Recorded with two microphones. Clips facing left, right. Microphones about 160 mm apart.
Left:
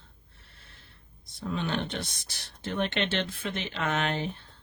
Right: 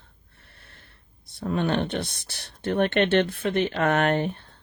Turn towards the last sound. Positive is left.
turn(degrees=-55)  # may be behind; listen again after turning